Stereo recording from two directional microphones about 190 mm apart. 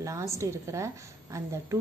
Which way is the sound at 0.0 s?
15° right (ahead or behind).